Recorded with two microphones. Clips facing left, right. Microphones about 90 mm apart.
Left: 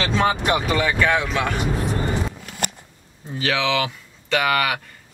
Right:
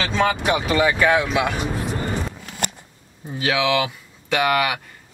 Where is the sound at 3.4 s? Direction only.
10° right (ahead or behind).